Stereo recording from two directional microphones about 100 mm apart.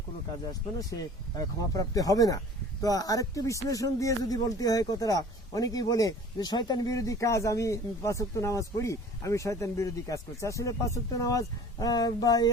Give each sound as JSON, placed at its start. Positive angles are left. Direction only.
{"t": 0.8, "sound": "speech", "side_deg": 35}